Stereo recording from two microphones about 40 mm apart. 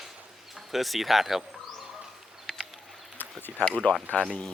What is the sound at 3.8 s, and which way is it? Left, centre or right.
Speech, left.